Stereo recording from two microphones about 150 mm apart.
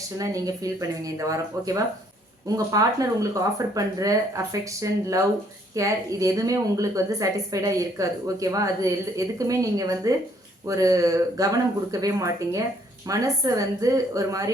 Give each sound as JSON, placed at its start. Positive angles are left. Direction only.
{"t": 0.2, "sound": "a woman's voice", "side_deg": -25}